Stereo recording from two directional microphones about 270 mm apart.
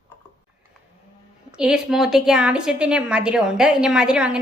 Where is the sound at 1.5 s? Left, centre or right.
Centre.